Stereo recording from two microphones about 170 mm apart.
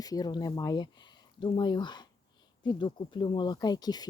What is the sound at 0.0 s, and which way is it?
Speech, 20° left (ahead or behind).